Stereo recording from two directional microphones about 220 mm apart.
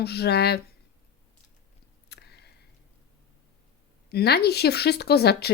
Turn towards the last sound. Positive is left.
turn(degrees=45)  # may be behind; listen again after turning